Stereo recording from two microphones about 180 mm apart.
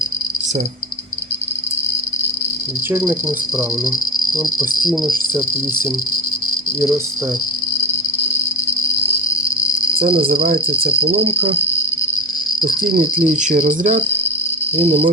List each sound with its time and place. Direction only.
2.9 s speech: 10° right (ahead or behind)
6.7 s speech: 15° right (ahead or behind)
10.3 s cricket: 55° right (ahead or behind)
11.0 s speech: 30° right (ahead or behind)
13.0 s cricket: 45° right (ahead or behind)
14.8 s speech: 35° right (ahead or behind)